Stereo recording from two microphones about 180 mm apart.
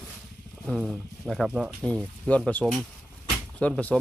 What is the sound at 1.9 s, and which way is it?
Speech, 5° left (ahead or behind).